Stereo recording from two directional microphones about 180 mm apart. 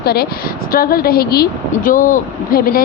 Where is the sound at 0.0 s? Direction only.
60° left (ahead or behind).